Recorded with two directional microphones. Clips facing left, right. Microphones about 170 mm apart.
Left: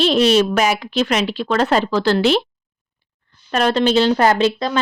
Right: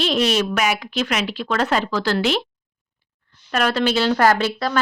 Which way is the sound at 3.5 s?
25° left (ahead or behind).